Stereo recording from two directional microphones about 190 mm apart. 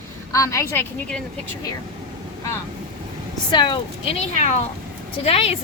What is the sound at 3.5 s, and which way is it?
Speech, 25° left (ahead or behind).